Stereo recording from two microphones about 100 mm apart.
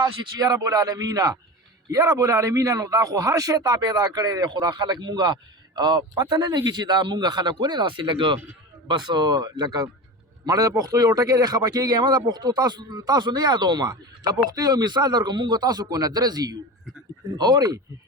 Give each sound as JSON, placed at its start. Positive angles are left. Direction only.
{"t": 0.0, "sound": "a man's voice", "side_deg": -40}